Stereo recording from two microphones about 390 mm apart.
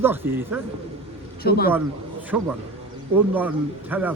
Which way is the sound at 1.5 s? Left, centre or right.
Left.